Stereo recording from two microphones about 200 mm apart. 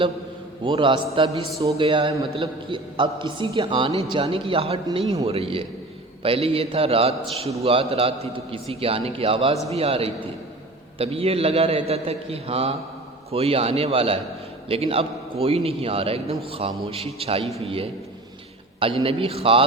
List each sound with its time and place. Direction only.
0.6 s a man's voice: 25° right (ahead or behind)